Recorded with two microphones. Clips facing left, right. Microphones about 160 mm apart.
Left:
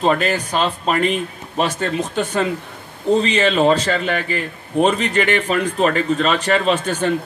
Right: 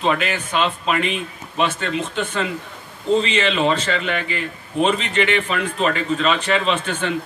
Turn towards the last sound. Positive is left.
turn(degrees=40)  # may be behind; listen again after turning